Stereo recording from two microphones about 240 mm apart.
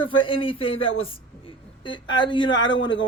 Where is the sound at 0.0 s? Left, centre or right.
Left.